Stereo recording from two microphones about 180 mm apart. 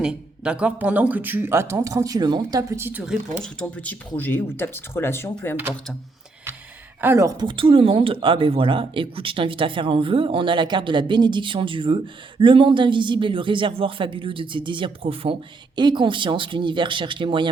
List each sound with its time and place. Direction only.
0.0 s speech: 5° right (ahead or behind)
3.4 s speech: 5° left (ahead or behind)
7.0 s speech: 15° right (ahead or behind)